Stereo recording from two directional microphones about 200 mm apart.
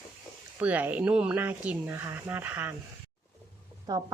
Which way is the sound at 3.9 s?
20° right (ahead or behind).